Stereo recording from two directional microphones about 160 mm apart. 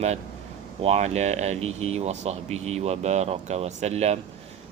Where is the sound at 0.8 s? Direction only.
40° right (ahead or behind).